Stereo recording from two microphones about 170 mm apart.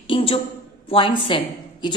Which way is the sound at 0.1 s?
35° left (ahead or behind).